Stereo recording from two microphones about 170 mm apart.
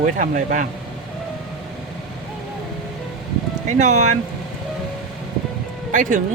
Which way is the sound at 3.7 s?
45° right (ahead or behind).